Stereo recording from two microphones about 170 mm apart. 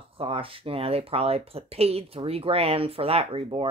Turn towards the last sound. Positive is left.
turn(degrees=-30)  # may be behind; listen again after turning